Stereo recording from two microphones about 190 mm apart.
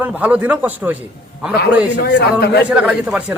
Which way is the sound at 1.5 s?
55° left (ahead or behind).